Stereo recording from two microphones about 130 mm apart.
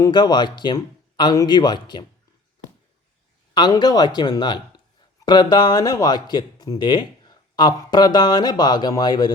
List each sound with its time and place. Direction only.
0.0 s speech: 35° left (ahead or behind)
3.5 s speech: 35° left (ahead or behind)